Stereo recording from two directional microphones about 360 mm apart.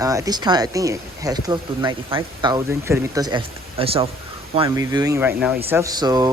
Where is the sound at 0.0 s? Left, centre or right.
Centre.